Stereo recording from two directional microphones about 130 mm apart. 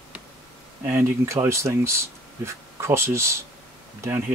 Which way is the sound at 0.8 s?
20° right (ahead or behind).